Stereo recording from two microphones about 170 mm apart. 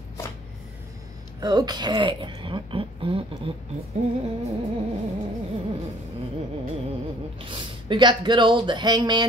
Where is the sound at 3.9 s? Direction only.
45° right (ahead or behind).